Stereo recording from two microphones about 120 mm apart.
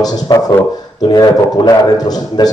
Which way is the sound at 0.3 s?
35° left (ahead or behind).